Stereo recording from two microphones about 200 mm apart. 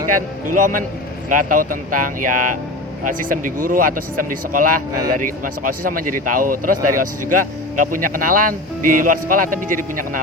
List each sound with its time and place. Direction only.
0.4 s speech: 40° right (ahead or behind)